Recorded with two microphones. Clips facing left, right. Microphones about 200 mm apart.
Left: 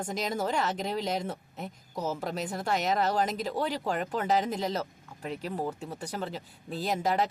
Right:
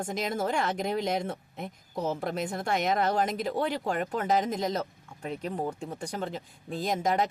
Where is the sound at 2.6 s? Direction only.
50° right (ahead or behind).